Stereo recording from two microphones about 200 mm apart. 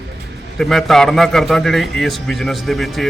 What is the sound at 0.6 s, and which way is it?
Speech, centre (ahead or behind).